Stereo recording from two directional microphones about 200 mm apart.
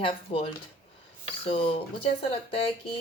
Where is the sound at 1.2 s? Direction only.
30° left (ahead or behind).